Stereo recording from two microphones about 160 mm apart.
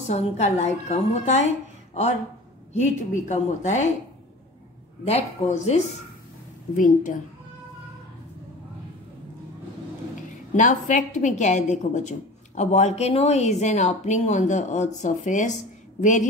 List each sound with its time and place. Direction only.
0.1 s a woman's voice: 45° left (ahead or behind)
2.7 s a woman's voice: 45° left (ahead or behind)
5.0 s a woman's voice: 45° left (ahead or behind)
10.5 s a woman's voice: 50° left (ahead or behind)